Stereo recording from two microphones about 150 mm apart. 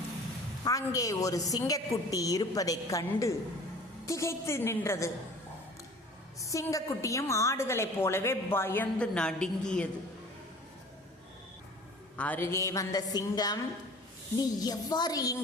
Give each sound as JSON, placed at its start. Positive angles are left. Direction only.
{"t": 0.6, "sound": "a woman's voice", "side_deg": 20}
{"t": 6.4, "sound": "a woman's voice", "side_deg": 20}
{"t": 12.1, "sound": "a woman's voice", "side_deg": 10}